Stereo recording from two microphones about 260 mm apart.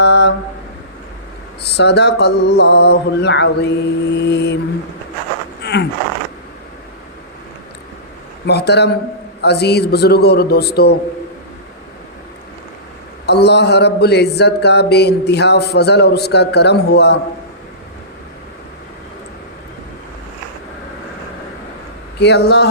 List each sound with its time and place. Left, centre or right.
0.0 s a sound: left
1.6 s speech: left
5.6 s a sound: left
8.4 s speech: left
13.2 s speech: left
22.2 s speech: left